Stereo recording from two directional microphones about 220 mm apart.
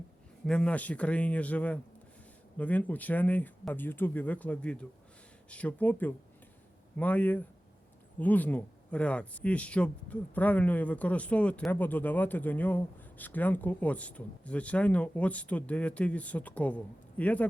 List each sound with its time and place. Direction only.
0.4 s speech: 5° left (ahead or behind)